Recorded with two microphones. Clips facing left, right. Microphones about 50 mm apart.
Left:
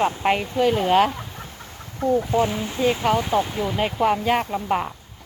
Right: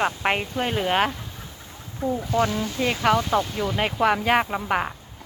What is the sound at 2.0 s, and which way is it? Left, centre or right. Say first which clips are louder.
Speech: left 5 dB; left.